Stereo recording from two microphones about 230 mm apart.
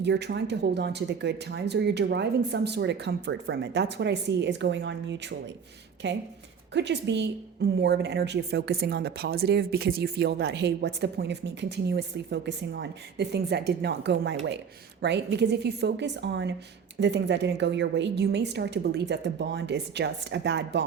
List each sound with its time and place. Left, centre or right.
0.0 s a woman's voice: right